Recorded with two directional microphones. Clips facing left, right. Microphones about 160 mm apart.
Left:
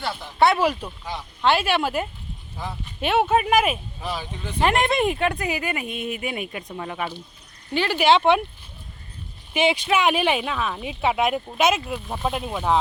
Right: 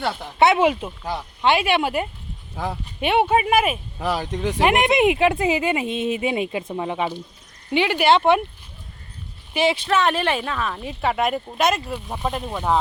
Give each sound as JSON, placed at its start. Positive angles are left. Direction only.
{"t": 0.3, "sound": "a woman's voice", "side_deg": -20}
{"t": 3.1, "sound": "speech", "side_deg": -10}
{"t": 4.0, "sound": "speech", "side_deg": -75}
{"t": 4.6, "sound": "a woman's voice", "side_deg": -15}
{"t": 7.9, "sound": "speech", "side_deg": -5}
{"t": 9.6, "sound": "speech", "side_deg": -35}
{"t": 9.9, "sound": "speech", "side_deg": 5}